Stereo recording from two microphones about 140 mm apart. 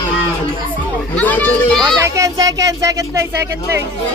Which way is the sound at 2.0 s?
25° right (ahead or behind).